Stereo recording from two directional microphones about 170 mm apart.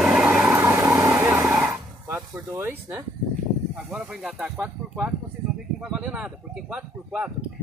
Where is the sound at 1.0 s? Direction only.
10° right (ahead or behind).